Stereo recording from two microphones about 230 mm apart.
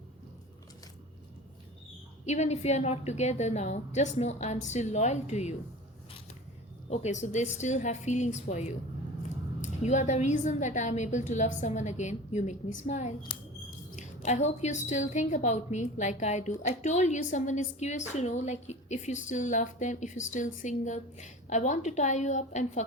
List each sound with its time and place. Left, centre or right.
2.2 s a woman's voice: left
6.9 s a woman's voice: left
9.8 s a woman's voice: left